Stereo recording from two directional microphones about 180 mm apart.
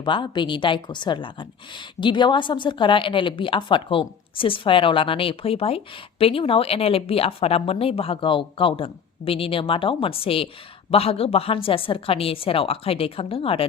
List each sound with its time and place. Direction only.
0.0 s a woman's voice: 25° left (ahead or behind)